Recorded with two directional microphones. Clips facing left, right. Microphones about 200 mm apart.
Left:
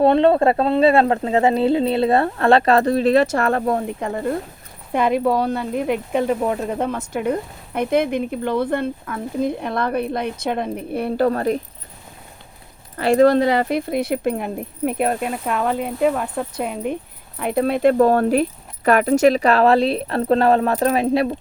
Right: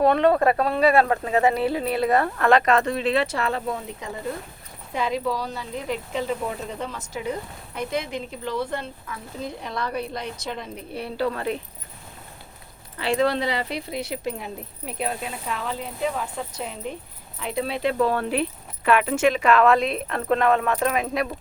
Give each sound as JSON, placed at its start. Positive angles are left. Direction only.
{"t": 0.0, "sound": "speech", "side_deg": 25}
{"t": 13.0, "sound": "speech", "side_deg": 45}